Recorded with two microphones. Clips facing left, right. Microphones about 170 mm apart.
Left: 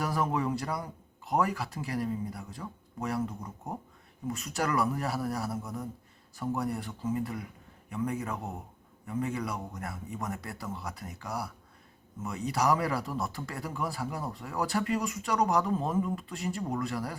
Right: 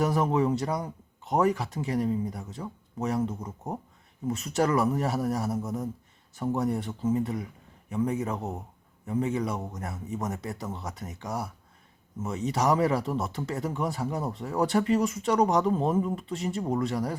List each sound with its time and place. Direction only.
0.0 s speech: 25° right (ahead or behind)